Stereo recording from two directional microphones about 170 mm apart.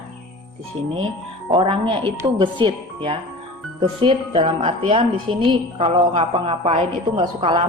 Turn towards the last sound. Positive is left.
turn(degrees=-30)  # may be behind; listen again after turning